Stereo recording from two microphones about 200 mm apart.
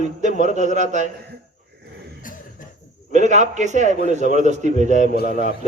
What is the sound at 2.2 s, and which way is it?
Cough, 40° left (ahead or behind).